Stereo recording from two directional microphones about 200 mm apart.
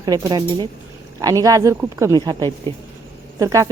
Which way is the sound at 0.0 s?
20° right (ahead or behind).